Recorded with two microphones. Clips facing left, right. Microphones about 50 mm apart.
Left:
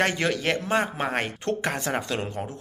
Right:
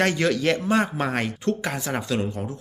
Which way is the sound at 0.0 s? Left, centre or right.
Left.